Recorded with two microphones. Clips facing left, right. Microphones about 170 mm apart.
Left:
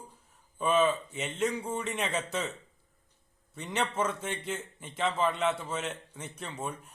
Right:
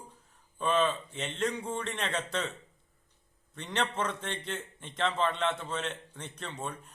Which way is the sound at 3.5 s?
10° left (ahead or behind).